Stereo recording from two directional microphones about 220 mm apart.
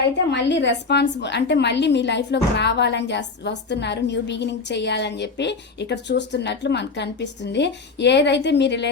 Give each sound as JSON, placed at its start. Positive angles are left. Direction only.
{"t": 0.3, "sound": "a woman's voice", "side_deg": 50}